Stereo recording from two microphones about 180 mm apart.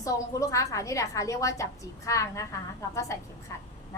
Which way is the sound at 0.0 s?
20° left (ahead or behind).